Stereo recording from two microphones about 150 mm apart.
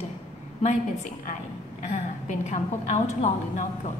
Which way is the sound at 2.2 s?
50° left (ahead or behind).